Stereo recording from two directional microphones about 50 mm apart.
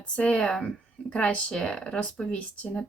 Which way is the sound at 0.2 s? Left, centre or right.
Left.